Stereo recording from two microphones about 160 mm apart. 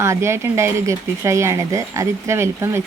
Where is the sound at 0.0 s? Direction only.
15° right (ahead or behind).